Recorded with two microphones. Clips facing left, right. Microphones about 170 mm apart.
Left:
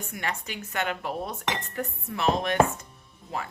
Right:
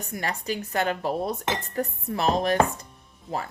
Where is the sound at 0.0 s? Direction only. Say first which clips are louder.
Right 3 dB; 35° right (ahead or behind).